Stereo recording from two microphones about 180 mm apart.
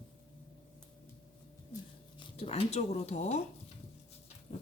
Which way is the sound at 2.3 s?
35° left (ahead or behind).